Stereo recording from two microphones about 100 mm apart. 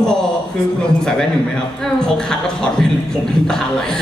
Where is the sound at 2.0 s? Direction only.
5° left (ahead or behind).